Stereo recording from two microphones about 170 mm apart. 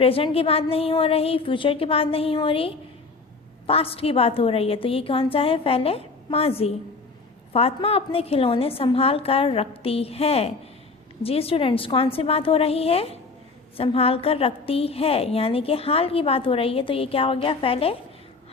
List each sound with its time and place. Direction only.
0.0 s a woman's voice: 35° left (ahead or behind)